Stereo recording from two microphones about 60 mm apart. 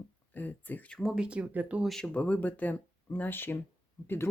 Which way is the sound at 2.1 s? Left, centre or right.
Left.